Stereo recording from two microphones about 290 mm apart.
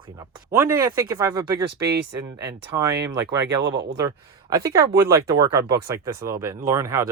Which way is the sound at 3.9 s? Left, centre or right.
Centre.